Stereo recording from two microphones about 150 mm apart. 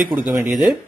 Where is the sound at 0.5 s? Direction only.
5° right (ahead or behind).